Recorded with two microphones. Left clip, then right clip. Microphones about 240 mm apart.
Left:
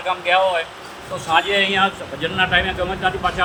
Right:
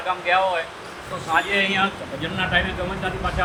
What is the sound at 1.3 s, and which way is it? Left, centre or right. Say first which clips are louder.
A man's voice: left 3 dB; left.